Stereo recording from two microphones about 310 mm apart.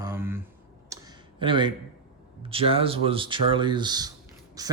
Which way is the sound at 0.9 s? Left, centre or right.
Centre.